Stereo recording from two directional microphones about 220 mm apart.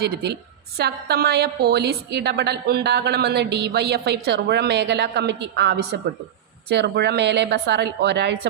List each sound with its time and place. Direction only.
0.0 s a woman's voice: 45° right (ahead or behind)